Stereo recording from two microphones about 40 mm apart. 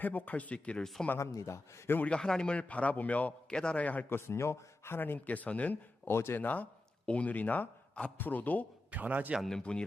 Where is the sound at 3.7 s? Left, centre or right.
Left.